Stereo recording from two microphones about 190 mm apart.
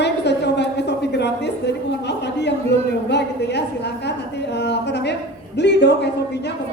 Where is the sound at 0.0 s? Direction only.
65° left (ahead or behind).